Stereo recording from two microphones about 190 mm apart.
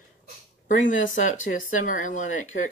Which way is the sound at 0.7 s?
40° left (ahead or behind).